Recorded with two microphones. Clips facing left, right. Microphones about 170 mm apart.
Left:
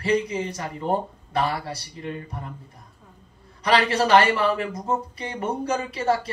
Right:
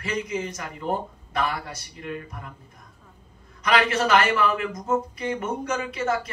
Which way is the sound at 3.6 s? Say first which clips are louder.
Left 1 dB; 30° left (ahead or behind).